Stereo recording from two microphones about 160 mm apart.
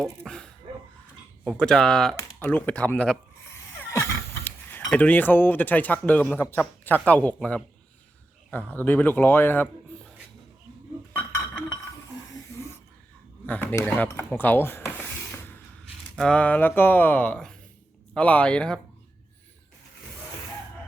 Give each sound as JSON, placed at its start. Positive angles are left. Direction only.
{"t": 0.3, "sound": "dog", "side_deg": 5}
{"t": 1.5, "sound": "speech", "side_deg": 5}
{"t": 12.3, "sound": "a sound", "side_deg": 20}
{"t": 13.5, "sound": "speech", "side_deg": 10}